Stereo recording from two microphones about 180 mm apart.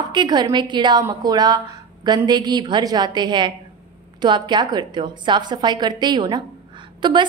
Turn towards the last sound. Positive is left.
turn(degrees=-25)  # may be behind; listen again after turning